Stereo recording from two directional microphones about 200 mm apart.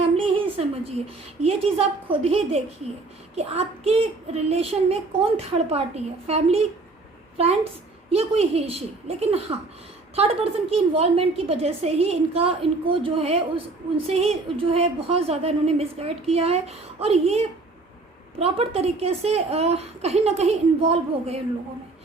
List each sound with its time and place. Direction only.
0.0 s a woman's voice: 30° right (ahead or behind)
8.1 s a child's voice: 30° right (ahead or behind)